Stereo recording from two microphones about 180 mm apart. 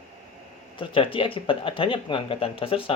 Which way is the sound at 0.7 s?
30° left (ahead or behind).